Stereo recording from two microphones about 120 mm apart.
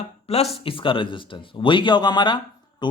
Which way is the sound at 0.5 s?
50° left (ahead or behind).